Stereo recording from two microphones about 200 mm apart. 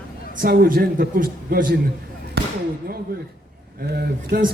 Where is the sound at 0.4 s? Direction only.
50° right (ahead or behind).